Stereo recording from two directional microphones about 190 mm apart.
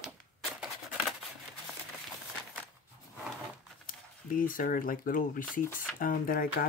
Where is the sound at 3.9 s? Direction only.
45° left (ahead or behind).